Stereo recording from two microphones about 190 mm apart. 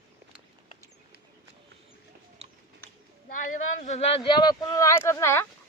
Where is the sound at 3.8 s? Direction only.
35° left (ahead or behind); by 5.5 s 15° left (ahead or behind).